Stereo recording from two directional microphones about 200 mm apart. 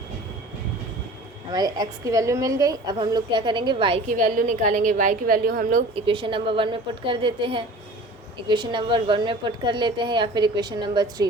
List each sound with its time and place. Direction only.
1.5 s a woman's voice: 20° right (ahead or behind)
4.1 s a woman's voice: 40° right (ahead or behind)
5.9 s a woman's voice: 25° right (ahead or behind)